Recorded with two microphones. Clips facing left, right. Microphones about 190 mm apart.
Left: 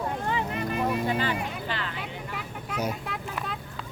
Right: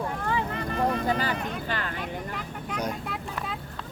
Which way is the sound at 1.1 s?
40° right (ahead or behind).